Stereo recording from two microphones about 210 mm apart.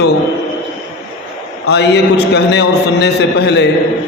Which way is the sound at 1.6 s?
55° left (ahead or behind).